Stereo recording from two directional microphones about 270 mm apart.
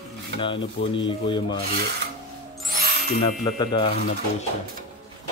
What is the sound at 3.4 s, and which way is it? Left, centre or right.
Speech, centre.